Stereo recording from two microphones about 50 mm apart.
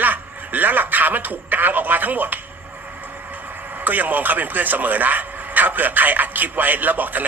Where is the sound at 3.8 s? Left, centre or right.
Right.